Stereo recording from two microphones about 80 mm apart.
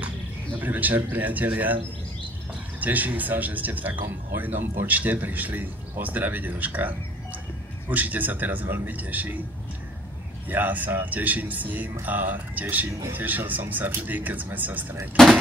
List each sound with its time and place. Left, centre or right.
0.6 s speech: right
2.8 s speech: right
10.5 s speech: right